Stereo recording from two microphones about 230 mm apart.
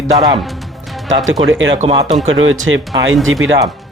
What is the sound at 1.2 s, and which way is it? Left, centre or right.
Speech, right.